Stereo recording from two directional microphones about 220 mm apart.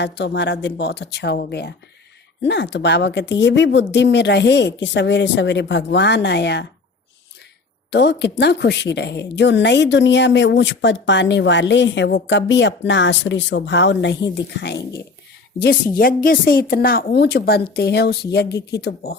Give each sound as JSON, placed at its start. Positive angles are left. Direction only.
{"t": 0.0, "sound": "a woman's voice", "side_deg": 50}
{"t": 7.9, "sound": "a woman's voice", "side_deg": 50}